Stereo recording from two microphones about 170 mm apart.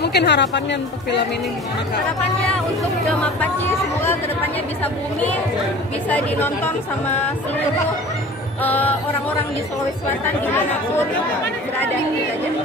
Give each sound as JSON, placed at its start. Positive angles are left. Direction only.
{"t": 0.0, "sound": "a woman's voice", "side_deg": 80}
{"t": 3.1, "sound": "speech", "side_deg": 10}
{"t": 6.0, "sound": "speech", "side_deg": 10}
{"t": 8.6, "sound": "speech", "side_deg": 10}